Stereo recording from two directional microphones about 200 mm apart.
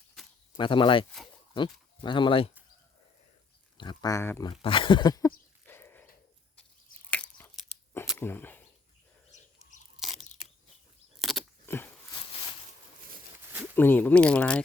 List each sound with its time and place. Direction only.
0.5 s speech: 25° left (ahead or behind)
3.8 s speech: 20° left (ahead or behind)
4.6 s speech: 25° left (ahead or behind)
5.6 s a sound: 10° left (ahead or behind)
7.1 s crunch: 10° left (ahead or behind)
8.2 s speech: 10° left (ahead or behind)
10.0 s a sound: centre (ahead or behind)
13.4 s a sound: 10° right (ahead or behind)
13.7 s speech: 10° left (ahead or behind)